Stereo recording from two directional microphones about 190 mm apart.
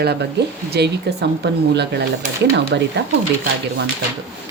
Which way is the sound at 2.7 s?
65° right (ahead or behind).